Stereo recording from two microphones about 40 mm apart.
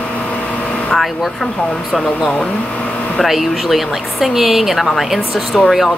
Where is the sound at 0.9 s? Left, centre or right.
Centre.